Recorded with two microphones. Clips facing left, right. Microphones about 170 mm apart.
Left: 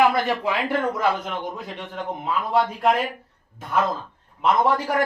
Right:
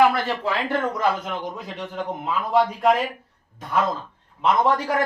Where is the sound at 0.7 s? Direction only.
5° left (ahead or behind).